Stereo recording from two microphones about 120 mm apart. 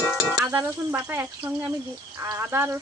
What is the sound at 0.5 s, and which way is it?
Speech, 15° right (ahead or behind).